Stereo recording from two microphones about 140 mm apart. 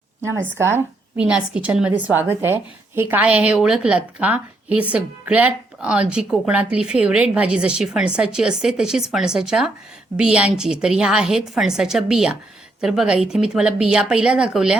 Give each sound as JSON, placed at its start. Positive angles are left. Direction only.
{"t": 0.2, "sound": "a woman's voice", "side_deg": -15}